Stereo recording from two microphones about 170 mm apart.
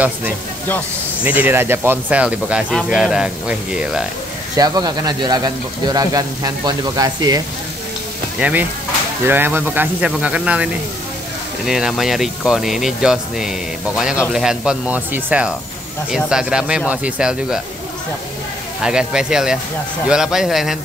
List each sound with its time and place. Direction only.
1.2 s speech: 10° right (ahead or behind)
4.6 s speech: 25° right (ahead or behind)
8.4 s speech: 10° right (ahead or behind)
18.8 s speech: 5° right (ahead or behind)